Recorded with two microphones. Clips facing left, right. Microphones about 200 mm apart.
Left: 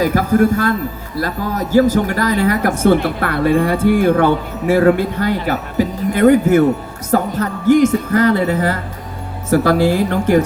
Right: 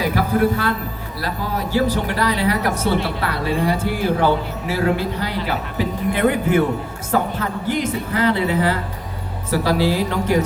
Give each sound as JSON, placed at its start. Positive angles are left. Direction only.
{"t": 0.0, "sound": "speech", "side_deg": 45}